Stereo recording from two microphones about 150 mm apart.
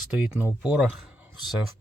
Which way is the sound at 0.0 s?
5° right (ahead or behind).